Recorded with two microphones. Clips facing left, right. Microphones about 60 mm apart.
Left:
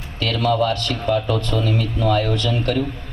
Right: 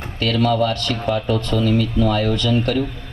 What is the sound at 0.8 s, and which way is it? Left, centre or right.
Speech, right.